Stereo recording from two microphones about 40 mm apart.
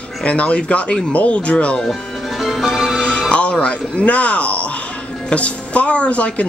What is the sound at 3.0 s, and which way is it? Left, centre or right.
Music, left.